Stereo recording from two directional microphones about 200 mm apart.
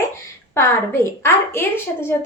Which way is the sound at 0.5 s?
10° left (ahead or behind).